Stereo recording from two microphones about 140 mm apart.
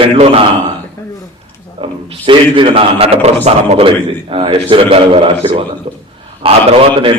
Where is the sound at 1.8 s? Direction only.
40° right (ahead or behind).